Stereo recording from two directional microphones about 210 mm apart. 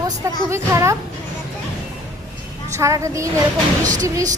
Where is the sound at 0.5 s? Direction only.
15° right (ahead or behind).